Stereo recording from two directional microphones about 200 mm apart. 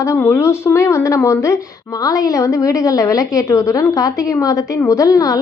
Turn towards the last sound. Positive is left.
turn(degrees=15)  # may be behind; listen again after turning